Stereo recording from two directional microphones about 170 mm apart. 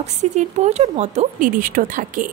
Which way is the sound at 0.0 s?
45° right (ahead or behind).